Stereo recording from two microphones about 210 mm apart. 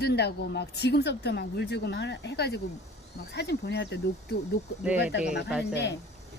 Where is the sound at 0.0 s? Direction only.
50° left (ahead or behind).